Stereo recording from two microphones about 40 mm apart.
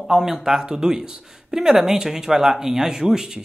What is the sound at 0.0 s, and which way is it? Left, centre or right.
Speech, centre.